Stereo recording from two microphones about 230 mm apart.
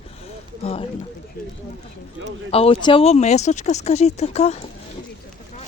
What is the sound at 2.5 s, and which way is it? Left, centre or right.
Speech, left.